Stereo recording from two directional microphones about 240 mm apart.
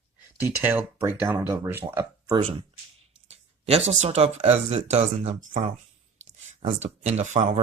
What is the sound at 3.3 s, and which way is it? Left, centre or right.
Speech, right.